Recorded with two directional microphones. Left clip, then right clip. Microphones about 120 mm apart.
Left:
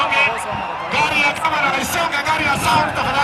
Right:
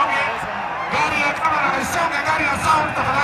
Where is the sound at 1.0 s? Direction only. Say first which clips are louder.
Left 3 dB; 25° left (ahead or behind).